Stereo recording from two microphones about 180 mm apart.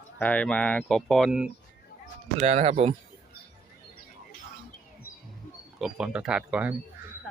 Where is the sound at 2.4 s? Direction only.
35° right (ahead or behind).